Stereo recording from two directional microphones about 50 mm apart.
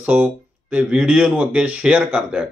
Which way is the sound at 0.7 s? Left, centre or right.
Right.